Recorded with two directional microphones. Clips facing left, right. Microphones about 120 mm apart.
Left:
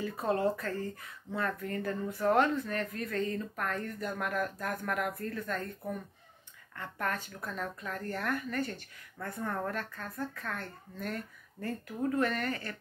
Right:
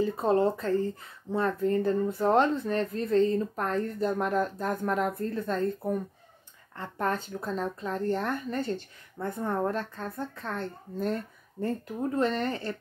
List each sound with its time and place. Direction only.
0.0 s speech: 25° right (ahead or behind)